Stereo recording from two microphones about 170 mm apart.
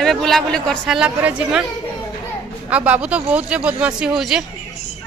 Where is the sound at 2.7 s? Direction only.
10° right (ahead or behind).